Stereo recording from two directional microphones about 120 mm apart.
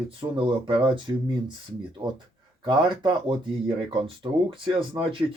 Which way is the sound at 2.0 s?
45° right (ahead or behind).